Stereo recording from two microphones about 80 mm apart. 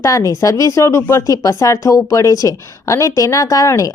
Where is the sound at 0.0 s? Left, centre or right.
Left.